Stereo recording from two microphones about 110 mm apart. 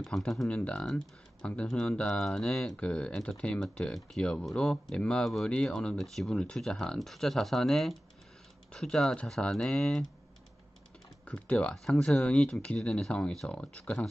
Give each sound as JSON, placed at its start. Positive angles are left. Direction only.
{"t": 0.0, "sound": "speech", "side_deg": 0}
{"t": 11.2, "sound": "speech", "side_deg": 10}